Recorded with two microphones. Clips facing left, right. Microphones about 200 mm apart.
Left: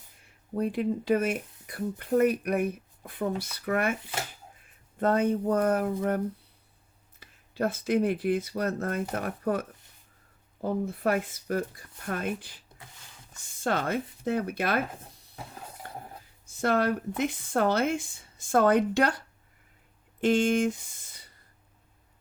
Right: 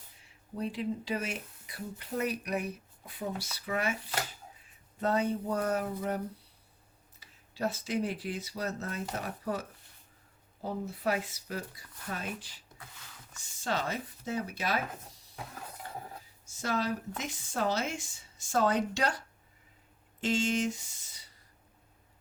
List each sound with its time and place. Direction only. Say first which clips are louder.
0.2 s speech: left 7 dB; 55° left (ahead or behind)
4.9 s speech: left 5 dB; 55° left (ahead or behind)
16.5 s speech: left 7 dB; 60° left (ahead or behind)
20.2 s speech: left 6 dB; 55° left (ahead or behind)